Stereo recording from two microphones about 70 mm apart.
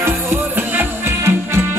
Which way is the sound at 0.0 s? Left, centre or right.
Right.